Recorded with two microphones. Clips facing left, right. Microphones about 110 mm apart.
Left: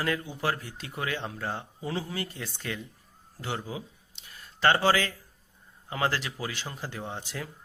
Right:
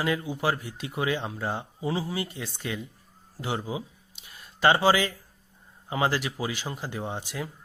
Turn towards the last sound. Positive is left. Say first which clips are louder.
# right 3 dB
turn(degrees=-15)  # may be behind; listen again after turning